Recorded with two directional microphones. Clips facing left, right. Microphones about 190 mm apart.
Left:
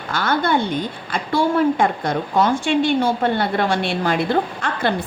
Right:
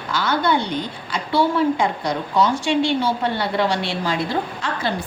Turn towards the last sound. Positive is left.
turn(degrees=55)  # may be behind; listen again after turning